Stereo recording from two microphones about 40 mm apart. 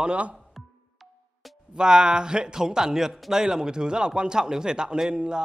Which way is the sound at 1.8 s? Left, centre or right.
Centre.